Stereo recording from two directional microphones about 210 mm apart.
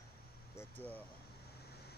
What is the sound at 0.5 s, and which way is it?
Air conditioning, 10° left (ahead or behind).